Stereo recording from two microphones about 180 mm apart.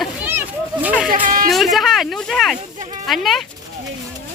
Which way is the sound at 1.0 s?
50° right (ahead or behind).